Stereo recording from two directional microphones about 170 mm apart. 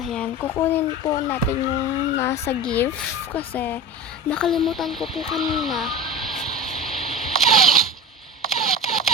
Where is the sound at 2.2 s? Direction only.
15° left (ahead or behind).